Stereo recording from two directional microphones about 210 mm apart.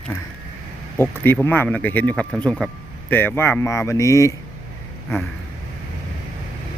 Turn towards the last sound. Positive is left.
turn(degrees=10)  # may be behind; listen again after turning